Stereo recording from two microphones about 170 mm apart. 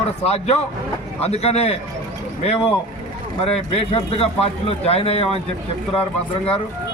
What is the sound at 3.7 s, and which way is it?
A man's voice, 35° left (ahead or behind).